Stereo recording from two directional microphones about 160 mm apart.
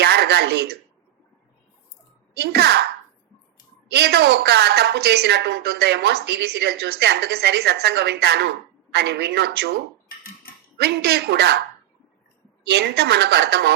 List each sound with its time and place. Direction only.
0.0 s a sound: 90° right
2.3 s a woman's voice: 90° right
3.9 s a woman's voice: 90° right
10.8 s a woman's voice: 90° right
12.6 s a woman's voice: 90° right